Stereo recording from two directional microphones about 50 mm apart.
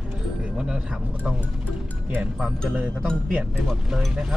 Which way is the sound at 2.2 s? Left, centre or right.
Centre.